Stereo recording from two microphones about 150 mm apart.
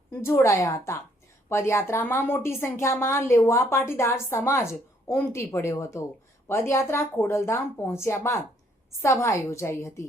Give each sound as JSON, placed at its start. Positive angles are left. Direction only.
{"t": 0.1, "sound": "a woman's voice", "side_deg": 15}